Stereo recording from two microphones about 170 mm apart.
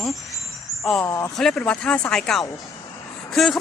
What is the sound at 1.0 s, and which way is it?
Speech, 15° left (ahead or behind).